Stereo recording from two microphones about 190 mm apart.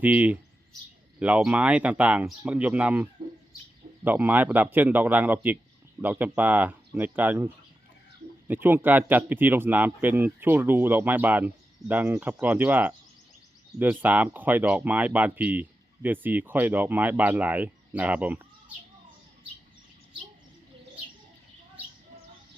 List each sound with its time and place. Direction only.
0.0 s speech: 10° right (ahead or behind)